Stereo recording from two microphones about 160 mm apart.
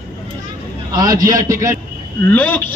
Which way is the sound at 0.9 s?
25° right (ahead or behind).